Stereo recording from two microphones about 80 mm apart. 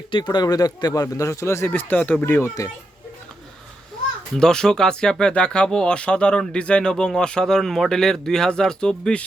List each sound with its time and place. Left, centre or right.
0.1 s speech: left
1.0 s a man's voice: left
1.7 s speech: left
4.4 s speech: centre